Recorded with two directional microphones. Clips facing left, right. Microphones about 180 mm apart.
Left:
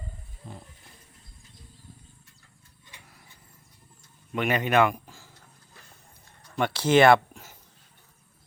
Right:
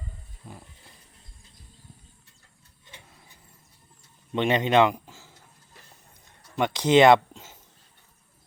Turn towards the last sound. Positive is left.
turn(degrees=-20)  # may be behind; listen again after turning